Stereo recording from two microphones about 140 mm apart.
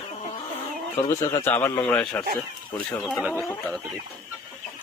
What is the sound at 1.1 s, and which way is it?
Speech, 25° left (ahead or behind).